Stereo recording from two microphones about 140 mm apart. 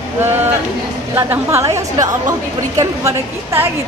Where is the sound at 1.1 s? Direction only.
20° right (ahead or behind).